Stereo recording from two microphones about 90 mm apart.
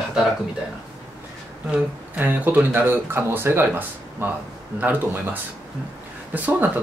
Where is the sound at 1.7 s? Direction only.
20° right (ahead or behind).